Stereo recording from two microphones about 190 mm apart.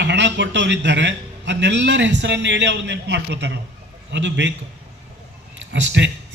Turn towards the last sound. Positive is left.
turn(degrees=-70)  # may be behind; listen again after turning